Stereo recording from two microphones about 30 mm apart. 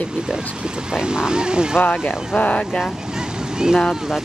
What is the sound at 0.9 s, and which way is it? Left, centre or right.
Speech, right.